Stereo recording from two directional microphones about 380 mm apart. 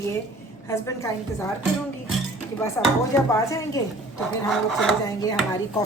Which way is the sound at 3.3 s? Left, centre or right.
Centre.